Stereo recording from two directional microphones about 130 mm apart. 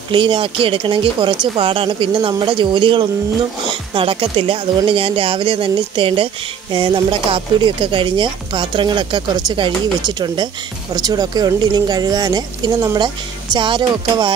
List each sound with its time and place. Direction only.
0.1 s speech: 40° right (ahead or behind)